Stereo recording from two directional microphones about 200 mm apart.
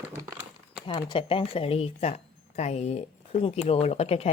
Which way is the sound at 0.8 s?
25° left (ahead or behind).